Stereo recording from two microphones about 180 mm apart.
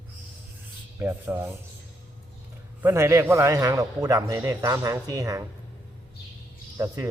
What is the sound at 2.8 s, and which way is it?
A man's voice, 15° right (ahead or behind).